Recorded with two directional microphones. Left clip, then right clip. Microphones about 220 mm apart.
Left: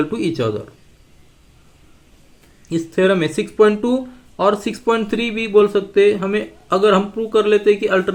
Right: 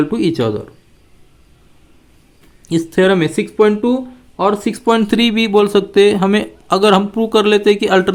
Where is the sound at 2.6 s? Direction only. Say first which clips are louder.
Right 3 dB; 35° right (ahead or behind).